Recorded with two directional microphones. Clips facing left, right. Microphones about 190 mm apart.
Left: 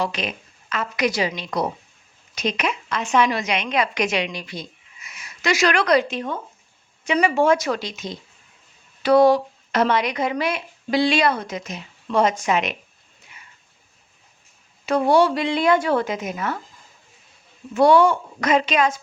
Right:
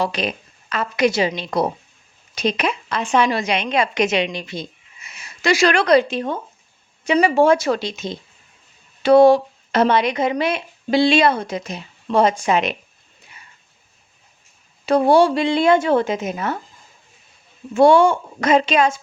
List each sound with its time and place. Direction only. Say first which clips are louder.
0.0 s a woman's voice: right 3 dB; 35° right (ahead or behind)
14.8 s a woman's voice: right 3 dB; 30° right (ahead or behind)
17.7 s a woman's voice: right 2 dB; 25° right (ahead or behind)